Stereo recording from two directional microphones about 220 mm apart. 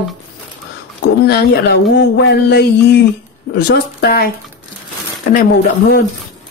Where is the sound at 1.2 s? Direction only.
45° left (ahead or behind).